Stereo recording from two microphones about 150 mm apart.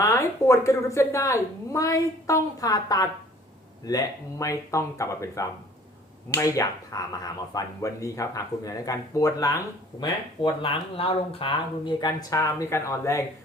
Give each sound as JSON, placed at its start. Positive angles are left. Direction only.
{"t": 0.0, "sound": "speech", "side_deg": 20}